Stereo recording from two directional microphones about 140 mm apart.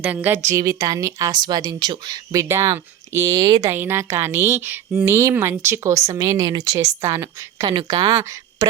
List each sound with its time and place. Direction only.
0.0 s speech: 15° right (ahead or behind); by 3.7 s 30° right (ahead or behind)
3.7 s speech: 15° right (ahead or behind)